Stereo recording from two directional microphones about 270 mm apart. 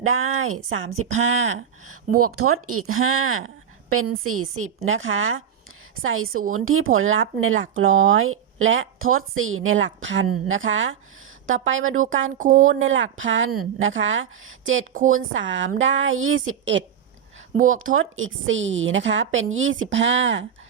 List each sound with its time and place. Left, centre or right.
0.0 s speech: right
12.4 s speech: right
12.8 s speech: right